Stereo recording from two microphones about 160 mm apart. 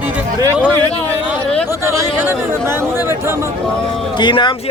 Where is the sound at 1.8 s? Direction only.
20° right (ahead or behind).